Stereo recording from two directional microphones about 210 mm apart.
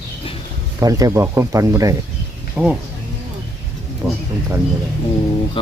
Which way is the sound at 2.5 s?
5° right (ahead or behind).